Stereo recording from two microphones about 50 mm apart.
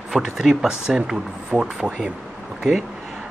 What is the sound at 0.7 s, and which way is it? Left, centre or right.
Speech, centre.